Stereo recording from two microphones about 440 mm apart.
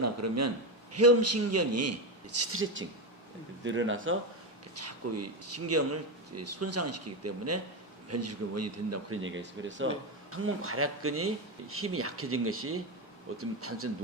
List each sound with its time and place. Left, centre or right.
0.0 s speech: right